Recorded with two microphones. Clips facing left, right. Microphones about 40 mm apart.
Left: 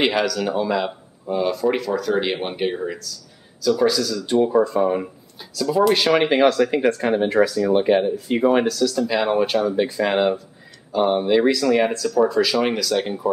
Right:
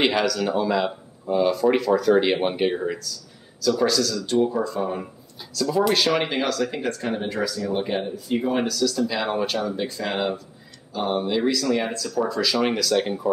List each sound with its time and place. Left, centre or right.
0.0 s speech: centre; by 5.0 s left
5.5 s speech: centre
8.8 s speech: centre